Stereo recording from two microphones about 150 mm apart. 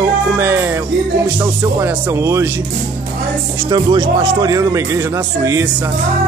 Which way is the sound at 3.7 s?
30° right (ahead or behind).